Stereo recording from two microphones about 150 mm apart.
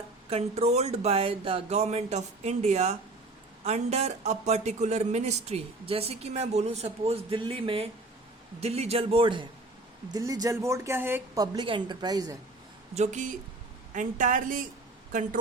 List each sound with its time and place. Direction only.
0.3 s a man's voice: 45° right (ahead or behind); by 11.4 s 15° right (ahead or behind)
11.5 s speech: 30° right (ahead or behind)
12.9 s a man's voice: 50° right (ahead or behind)